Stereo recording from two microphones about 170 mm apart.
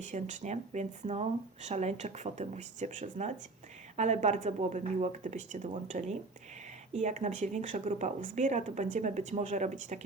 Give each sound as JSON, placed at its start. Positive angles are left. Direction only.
{"t": 0.0, "sound": "speech", "side_deg": -45}